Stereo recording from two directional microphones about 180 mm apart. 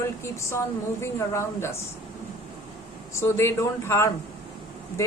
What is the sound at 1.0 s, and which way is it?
Speech, 15° left (ahead or behind).